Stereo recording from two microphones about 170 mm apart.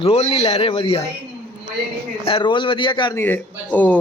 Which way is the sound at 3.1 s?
10° left (ahead or behind).